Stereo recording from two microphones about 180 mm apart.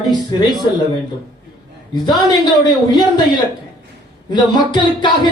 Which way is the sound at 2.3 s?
25° left (ahead or behind).